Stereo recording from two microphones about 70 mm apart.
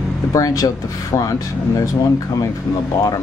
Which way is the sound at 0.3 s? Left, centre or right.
Left.